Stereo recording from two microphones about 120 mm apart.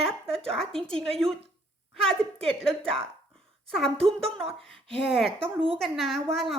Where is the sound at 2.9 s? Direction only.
5° left (ahead or behind).